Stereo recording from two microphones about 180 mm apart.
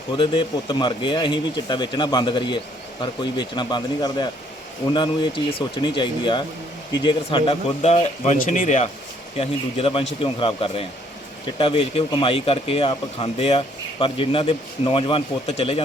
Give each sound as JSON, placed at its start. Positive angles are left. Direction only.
{"t": 0.1, "sound": "speech", "side_deg": 25}
{"t": 9.4, "sound": "speech", "side_deg": 30}